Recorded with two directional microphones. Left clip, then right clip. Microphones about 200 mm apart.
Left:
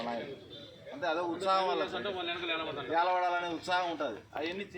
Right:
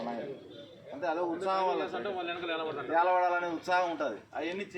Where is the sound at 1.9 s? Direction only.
60° left (ahead or behind).